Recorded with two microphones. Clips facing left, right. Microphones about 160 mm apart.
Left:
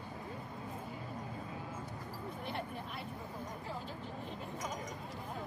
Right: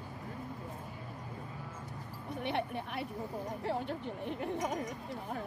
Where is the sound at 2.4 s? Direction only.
70° right (ahead or behind).